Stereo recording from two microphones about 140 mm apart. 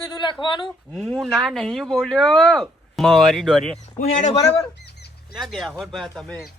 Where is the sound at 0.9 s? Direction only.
Centre (ahead or behind).